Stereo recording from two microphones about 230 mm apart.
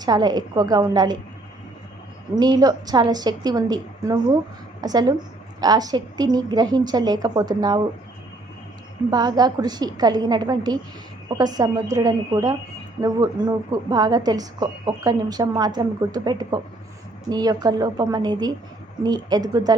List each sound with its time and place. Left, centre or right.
0.0 s a woman's voice: centre
2.3 s a woman's voice: centre
9.0 s a woman's voice: centre